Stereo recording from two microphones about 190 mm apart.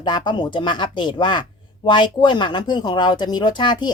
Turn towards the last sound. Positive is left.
turn(degrees=25)  # may be behind; listen again after turning